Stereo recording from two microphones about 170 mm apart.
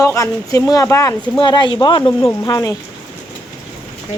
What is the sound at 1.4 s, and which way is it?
Speech, 25° left (ahead or behind).